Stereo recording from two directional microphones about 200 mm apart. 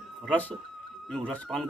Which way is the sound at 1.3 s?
Centre (ahead or behind).